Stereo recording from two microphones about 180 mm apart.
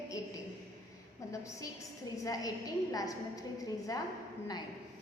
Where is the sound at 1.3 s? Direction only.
20° left (ahead or behind).